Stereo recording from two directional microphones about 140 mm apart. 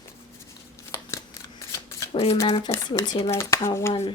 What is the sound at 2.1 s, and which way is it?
Speech, 45° left (ahead or behind).